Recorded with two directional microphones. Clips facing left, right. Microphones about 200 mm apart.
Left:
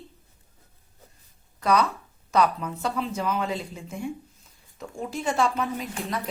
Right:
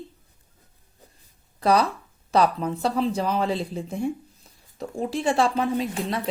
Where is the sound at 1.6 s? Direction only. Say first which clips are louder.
Right 2 dB; 35° right (ahead or behind).